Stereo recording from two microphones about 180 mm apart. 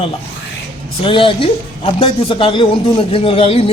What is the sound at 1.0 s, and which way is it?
A man's voice, 30° left (ahead or behind).